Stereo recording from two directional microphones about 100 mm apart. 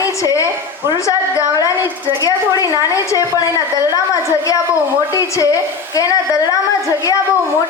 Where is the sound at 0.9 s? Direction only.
30° left (ahead or behind).